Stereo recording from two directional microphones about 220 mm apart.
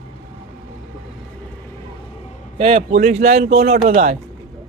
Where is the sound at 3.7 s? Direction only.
45° right (ahead or behind).